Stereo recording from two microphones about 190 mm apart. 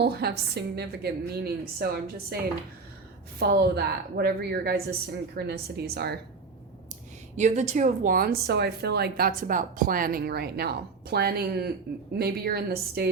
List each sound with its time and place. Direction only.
0.0 s a woman's voice: 60° right (ahead or behind)
7.3 s a woman's voice: 40° right (ahead or behind); by 13.1 s 55° right (ahead or behind)